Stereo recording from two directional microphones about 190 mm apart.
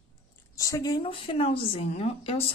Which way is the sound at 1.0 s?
30° left (ahead or behind).